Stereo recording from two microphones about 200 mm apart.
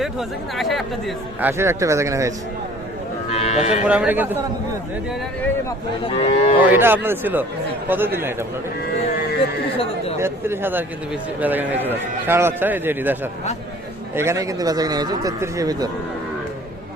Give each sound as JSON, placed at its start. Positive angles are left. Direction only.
{"t": 0.0, "sound": "speech", "side_deg": 0}
{"t": 1.5, "sound": "a man's voice", "side_deg": -15}
{"t": 3.3, "sound": "sheep", "side_deg": 30}
{"t": 3.8, "sound": "a man's voice", "side_deg": -5}
{"t": 6.1, "sound": "speech", "side_deg": 30}
{"t": 6.6, "sound": "a man's voice", "side_deg": -10}
{"t": 9.7, "sound": "a sound", "side_deg": 25}
{"t": 10.2, "sound": "a man's voice", "side_deg": -10}
{"t": 14.2, "sound": "speech", "side_deg": -15}